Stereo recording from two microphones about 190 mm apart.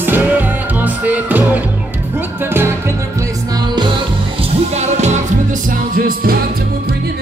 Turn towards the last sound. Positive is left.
turn(degrees=-45)  # may be behind; listen again after turning